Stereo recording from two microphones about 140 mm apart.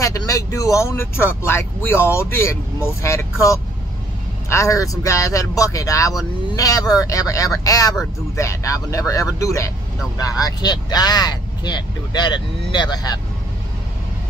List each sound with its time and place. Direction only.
0.0 s speech: 25° left (ahead or behind)